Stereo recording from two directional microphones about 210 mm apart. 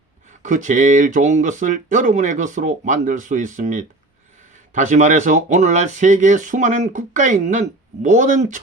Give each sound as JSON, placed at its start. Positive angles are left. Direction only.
{"t": 0.4, "sound": "speech", "side_deg": -35}